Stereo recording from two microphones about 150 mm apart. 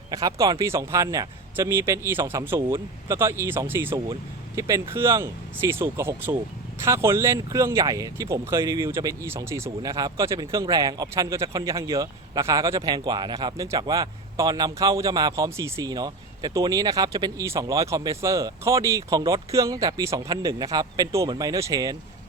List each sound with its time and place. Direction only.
0.1 s a man's voice: 25° right (ahead or behind)